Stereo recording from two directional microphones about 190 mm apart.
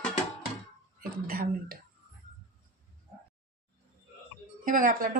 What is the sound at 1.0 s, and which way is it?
Speech, 50° right (ahead or behind).